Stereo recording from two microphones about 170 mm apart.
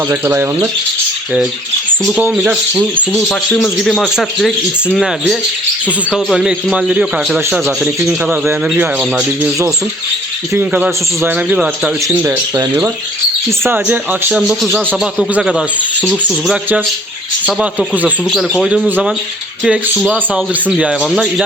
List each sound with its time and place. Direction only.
0.1 s speech: 15° right (ahead or behind)
2.0 s speech: 5° right (ahead or behind)
3.1 s a man's voice: 5° left (ahead or behind)
10.5 s a man's voice: 10° right (ahead or behind)